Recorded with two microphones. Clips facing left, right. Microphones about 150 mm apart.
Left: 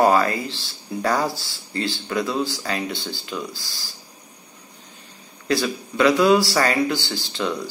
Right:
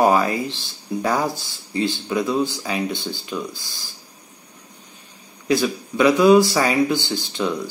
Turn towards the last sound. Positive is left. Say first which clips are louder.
# right 2 dB
turn(degrees=-15)  # may be behind; listen again after turning